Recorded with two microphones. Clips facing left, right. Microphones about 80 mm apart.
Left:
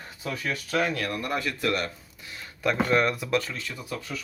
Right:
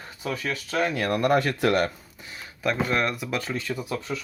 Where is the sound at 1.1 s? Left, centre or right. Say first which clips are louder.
Right 8 dB; right.